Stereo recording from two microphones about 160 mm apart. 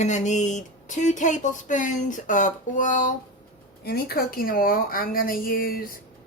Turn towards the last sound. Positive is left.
turn(degrees=65)  # may be behind; listen again after turning